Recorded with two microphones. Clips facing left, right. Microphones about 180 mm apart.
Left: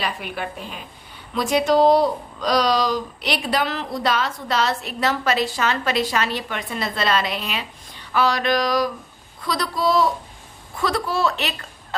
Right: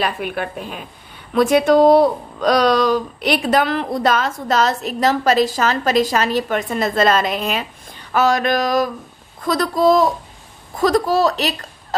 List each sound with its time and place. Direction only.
0.0 s a woman's voice: 50° right (ahead or behind)